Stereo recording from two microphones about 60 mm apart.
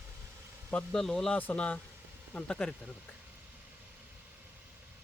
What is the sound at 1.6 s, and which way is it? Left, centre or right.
Speech, left.